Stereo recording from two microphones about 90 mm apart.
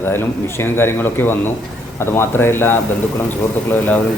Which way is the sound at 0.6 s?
25° left (ahead or behind).